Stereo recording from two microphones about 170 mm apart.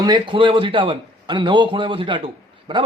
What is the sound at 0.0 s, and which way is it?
A man's voice, 25° right (ahead or behind).